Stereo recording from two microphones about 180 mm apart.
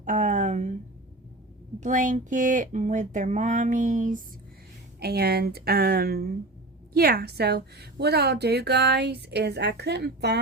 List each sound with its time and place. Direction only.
0.0 s a sound: 45° right (ahead or behind)
1.8 s speech: 45° right (ahead or behind)
4.9 s a woman's voice: 60° right (ahead or behind)